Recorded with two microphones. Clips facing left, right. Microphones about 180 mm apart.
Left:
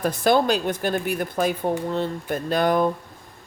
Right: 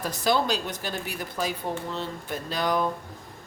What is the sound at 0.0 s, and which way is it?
A woman's voice, 55° left (ahead or behind).